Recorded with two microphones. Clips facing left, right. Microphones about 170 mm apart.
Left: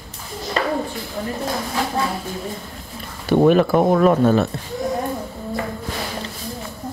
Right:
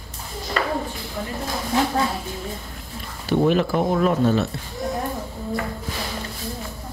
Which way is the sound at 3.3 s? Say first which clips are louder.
Left 5 dB; 55° left (ahead or behind).